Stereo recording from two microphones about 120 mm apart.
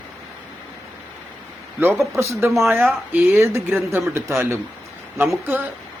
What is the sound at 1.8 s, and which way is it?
Speech, 25° right (ahead or behind).